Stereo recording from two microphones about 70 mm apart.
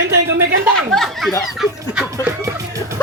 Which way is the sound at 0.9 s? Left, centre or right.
Centre.